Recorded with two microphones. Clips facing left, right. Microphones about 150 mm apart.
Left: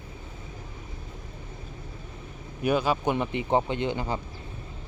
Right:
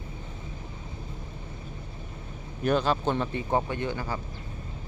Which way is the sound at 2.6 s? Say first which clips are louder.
Even; 10° left (ahead or behind).